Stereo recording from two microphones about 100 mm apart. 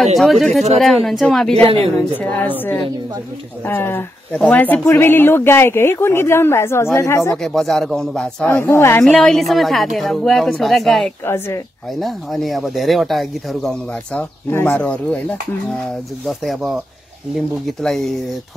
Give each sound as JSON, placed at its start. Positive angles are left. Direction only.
{"t": 0.0, "sound": "speech", "side_deg": 0}
{"t": 2.1, "sound": "speech", "side_deg": 20}
{"t": 3.6, "sound": "speech", "side_deg": 20}
{"t": 7.4, "sound": "speech", "side_deg": 0}
{"t": 8.5, "sound": "speech", "side_deg": 20}
{"t": 9.0, "sound": "speech", "side_deg": 5}
{"t": 11.2, "sound": "speech", "side_deg": 25}
{"t": 12.0, "sound": "speech", "side_deg": 0}
{"t": 14.5, "sound": "speech", "side_deg": 20}
{"t": 16.3, "sound": "speech", "side_deg": 0}